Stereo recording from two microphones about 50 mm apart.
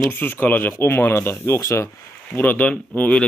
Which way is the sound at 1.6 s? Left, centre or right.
Left.